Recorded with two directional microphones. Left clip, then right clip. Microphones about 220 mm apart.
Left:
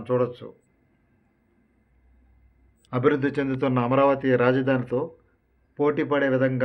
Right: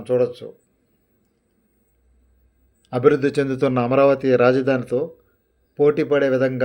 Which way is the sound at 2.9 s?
15° right (ahead or behind).